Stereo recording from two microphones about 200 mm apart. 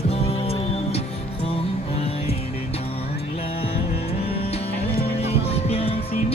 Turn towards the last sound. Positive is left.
turn(degrees=30)  # may be behind; listen again after turning